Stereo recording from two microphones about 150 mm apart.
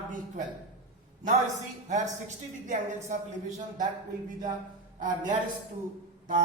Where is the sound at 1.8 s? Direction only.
55° right (ahead or behind).